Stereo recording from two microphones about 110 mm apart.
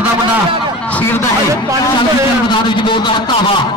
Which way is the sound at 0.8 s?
15° left (ahead or behind).